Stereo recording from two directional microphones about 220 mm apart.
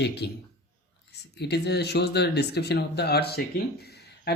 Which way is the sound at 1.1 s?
50° left (ahead or behind).